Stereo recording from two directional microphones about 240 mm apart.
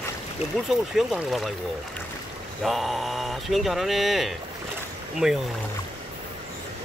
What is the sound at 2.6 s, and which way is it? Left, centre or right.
Speech, centre.